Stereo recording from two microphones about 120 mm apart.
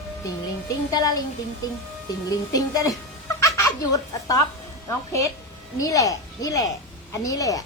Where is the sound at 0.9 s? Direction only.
30° left (ahead or behind).